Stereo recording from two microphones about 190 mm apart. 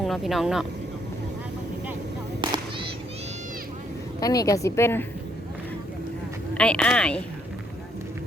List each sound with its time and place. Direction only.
0.0 s speech: centre (ahead or behind)
4.2 s a woman's voice: 20° left (ahead or behind)
6.5 s speech: 5° left (ahead or behind)